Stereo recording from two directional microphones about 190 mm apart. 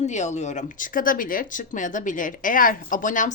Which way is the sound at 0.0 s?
40° left (ahead or behind).